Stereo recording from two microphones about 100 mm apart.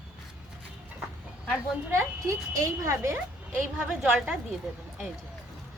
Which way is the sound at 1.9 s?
30° right (ahead or behind).